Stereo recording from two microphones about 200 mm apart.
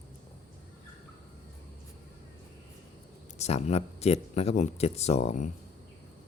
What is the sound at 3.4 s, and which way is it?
Speech, 30° left (ahead or behind).